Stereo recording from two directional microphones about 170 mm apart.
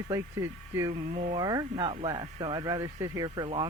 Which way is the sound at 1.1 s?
45° right (ahead or behind).